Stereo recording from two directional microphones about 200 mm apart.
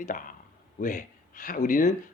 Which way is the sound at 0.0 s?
40° left (ahead or behind).